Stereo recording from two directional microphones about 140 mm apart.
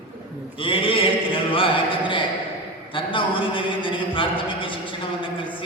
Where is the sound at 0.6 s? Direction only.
40° left (ahead or behind).